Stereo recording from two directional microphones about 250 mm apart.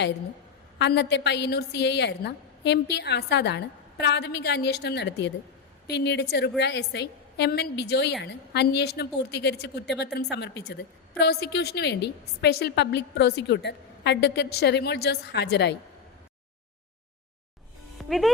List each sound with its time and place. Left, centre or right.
0.8 s a woman's voice: left
17.9 s music: centre